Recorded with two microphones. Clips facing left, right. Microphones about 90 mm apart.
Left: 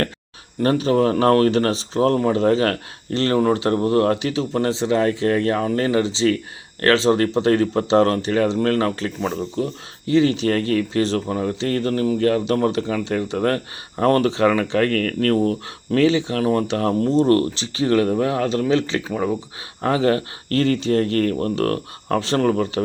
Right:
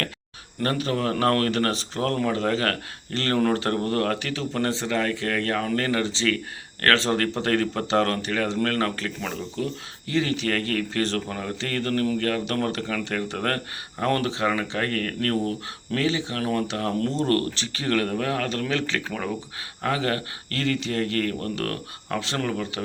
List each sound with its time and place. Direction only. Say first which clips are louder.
0.6 s speech: left 8 dB; 25° left (ahead or behind)
10.7 s speech: left 6 dB; 45° right (ahead or behind)
11.0 s speech: left 6 dB; 25° left (ahead or behind)
17.0 s speech: left 7 dB; 20° left (ahead or behind); by 22.8 s 40° left (ahead or behind)